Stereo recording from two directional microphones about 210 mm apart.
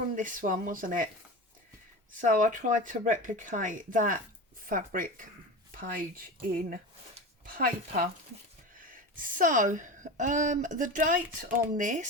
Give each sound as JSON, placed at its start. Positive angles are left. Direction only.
{"t": 0.2, "sound": "speech", "side_deg": -40}
{"t": 2.2, "sound": "a woman's voice", "side_deg": -40}